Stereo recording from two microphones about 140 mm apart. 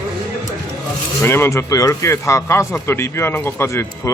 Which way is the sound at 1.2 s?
20° left (ahead or behind).